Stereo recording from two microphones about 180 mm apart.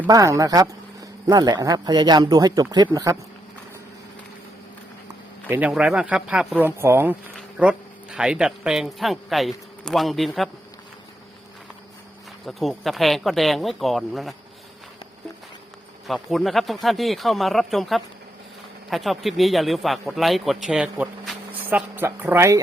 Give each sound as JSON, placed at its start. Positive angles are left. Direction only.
{"t": 0.1, "sound": "a man's voice", "side_deg": -20}
{"t": 5.5, "sound": "a man's voice", "side_deg": -10}
{"t": 12.5, "sound": "a man's voice", "side_deg": 0}
{"t": 16.0, "sound": "a man's voice", "side_deg": 0}